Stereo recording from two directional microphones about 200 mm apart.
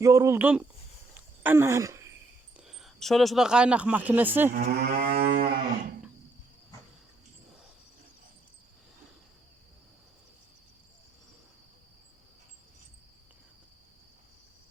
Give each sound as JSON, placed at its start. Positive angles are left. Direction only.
{"t": 0.0, "sound": "speech", "side_deg": -15}
{"t": 1.4, "sound": "groan", "side_deg": -10}
{"t": 2.6, "sound": "speech", "side_deg": 0}
{"t": 4.5, "sound": "moo", "side_deg": -50}